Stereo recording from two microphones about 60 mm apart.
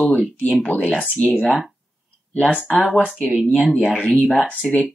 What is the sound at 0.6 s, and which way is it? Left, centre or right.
Speech, left.